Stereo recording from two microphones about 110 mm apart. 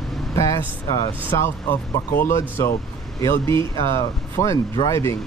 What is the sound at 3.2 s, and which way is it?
Speech, 25° left (ahead or behind).